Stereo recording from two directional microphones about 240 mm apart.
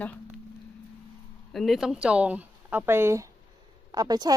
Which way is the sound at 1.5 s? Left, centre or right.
Centre.